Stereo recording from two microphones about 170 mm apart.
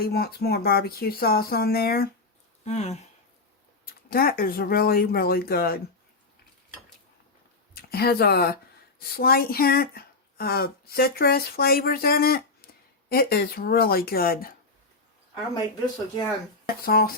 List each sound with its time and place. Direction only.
0.0 s speech: 65° left (ahead or behind)
2.6 s speech: 40° left (ahead or behind)
3.8 s speech: 60° left (ahead or behind)
7.7 s speech: 65° left (ahead or behind)
16.6 s speech: 60° left (ahead or behind)